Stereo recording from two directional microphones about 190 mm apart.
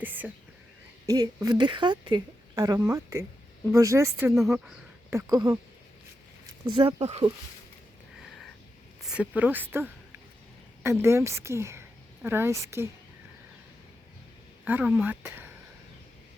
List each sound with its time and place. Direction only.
0.0 s a woman's voice: 10° right (ahead or behind)
4.3 s speech: centre (ahead or behind)
5.1 s a woman's voice: 20° right (ahead or behind)
6.7 s a woman's voice: 25° right (ahead or behind)
9.0 s a woman's voice: 5° right (ahead or behind)
14.6 s speech: 10° right (ahead or behind)